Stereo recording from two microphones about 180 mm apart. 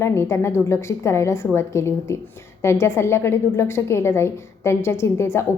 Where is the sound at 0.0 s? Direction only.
15° left (ahead or behind).